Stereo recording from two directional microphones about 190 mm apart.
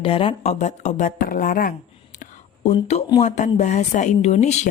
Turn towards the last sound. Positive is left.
turn(degrees=35)  # may be behind; listen again after turning